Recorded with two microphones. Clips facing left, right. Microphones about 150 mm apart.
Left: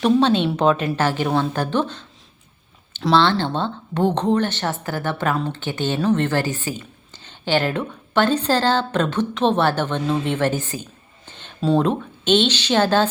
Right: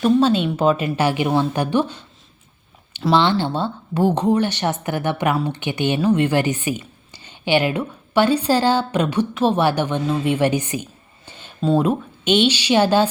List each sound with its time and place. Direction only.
0.0 s speech: 5° right (ahead or behind)
11.3 s a woman's voice: 5° right (ahead or behind)